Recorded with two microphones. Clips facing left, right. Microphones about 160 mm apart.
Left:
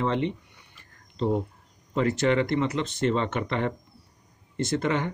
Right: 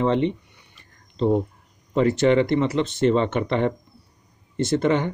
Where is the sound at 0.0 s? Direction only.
25° right (ahead or behind).